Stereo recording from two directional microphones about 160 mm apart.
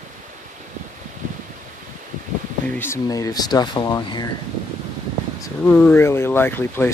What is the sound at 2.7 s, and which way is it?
Speech, 15° left (ahead or behind).